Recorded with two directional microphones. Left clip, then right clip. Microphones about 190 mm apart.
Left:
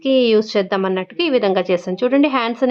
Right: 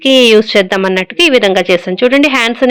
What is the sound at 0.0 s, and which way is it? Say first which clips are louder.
A woman's voice: right 8 dB; 10° right (ahead or behind).